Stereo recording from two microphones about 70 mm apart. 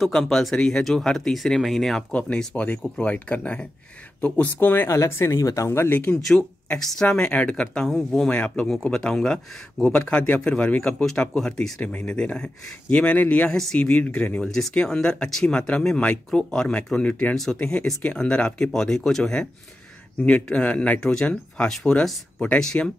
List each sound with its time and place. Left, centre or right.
0.0 s speech: centre
2.1 s speech: centre
4.8 s speech: left
5.7 s speech: left
6.8 s speech: centre
7.1 s speech: centre
8.3 s speech: centre
13.5 s speech: centre
13.9 s speech: left
14.4 s speech: centre